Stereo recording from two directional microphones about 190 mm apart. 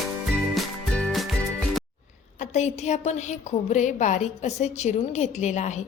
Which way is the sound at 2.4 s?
35° left (ahead or behind).